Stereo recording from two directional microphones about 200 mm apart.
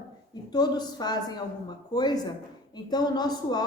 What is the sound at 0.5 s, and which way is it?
A woman's voice, 20° left (ahead or behind).